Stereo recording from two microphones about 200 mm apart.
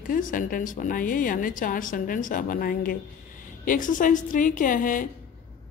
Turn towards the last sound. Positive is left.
turn(degrees=40)  # may be behind; listen again after turning